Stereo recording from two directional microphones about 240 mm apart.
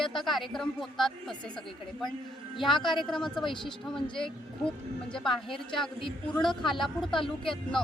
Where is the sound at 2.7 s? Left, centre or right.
Centre.